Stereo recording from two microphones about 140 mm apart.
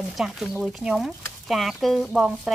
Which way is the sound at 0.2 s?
5° right (ahead or behind).